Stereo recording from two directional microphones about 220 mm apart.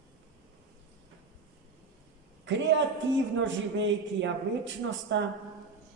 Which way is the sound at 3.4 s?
55° right (ahead or behind).